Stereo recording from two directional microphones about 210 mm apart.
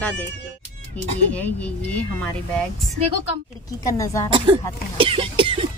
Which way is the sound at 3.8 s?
15° left (ahead or behind).